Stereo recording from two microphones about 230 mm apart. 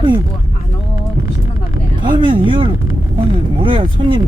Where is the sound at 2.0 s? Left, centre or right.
Right.